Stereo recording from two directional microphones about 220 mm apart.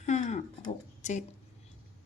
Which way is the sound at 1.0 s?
35° left (ahead or behind).